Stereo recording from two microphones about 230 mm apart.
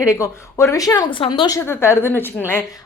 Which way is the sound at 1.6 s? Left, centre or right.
Centre.